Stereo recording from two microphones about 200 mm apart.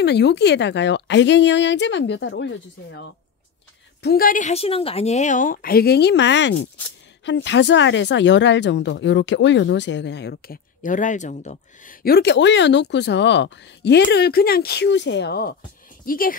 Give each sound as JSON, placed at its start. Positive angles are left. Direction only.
{"t": 0.0, "sound": "speech", "side_deg": 55}
{"t": 4.0, "sound": "a woman's voice", "side_deg": 50}